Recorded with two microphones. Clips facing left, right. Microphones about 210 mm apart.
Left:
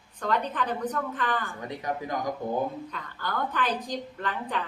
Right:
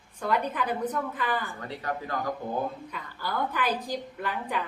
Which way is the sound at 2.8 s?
10° right (ahead or behind).